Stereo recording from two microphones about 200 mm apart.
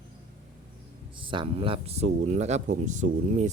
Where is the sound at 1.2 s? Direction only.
25° right (ahead or behind).